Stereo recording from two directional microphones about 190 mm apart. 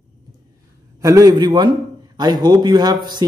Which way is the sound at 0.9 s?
15° right (ahead or behind).